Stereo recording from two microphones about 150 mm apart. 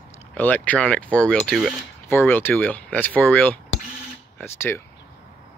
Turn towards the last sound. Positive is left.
turn(degrees=15)  # may be behind; listen again after turning